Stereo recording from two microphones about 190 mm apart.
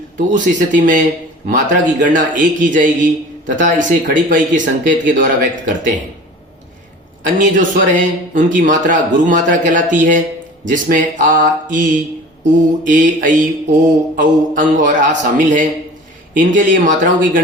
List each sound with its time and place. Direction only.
0.2 s a man's voice: 45° right (ahead or behind)
7.3 s a man's voice: 45° right (ahead or behind)
12.8 s a man's voice: 45° right (ahead or behind)